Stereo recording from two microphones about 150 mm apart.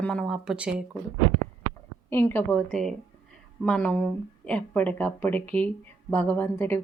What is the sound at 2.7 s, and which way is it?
Speech, centre (ahead or behind).